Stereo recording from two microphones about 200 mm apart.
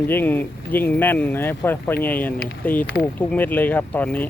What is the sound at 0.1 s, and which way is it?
Speech, 10° left (ahead or behind).